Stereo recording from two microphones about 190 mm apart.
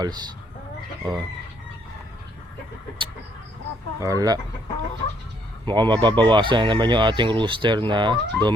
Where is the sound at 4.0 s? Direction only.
20° right (ahead or behind).